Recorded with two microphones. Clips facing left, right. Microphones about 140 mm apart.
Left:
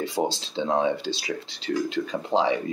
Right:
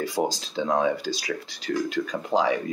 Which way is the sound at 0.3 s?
25° left (ahead or behind).